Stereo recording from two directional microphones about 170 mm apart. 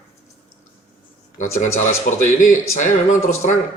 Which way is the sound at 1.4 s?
45° left (ahead or behind).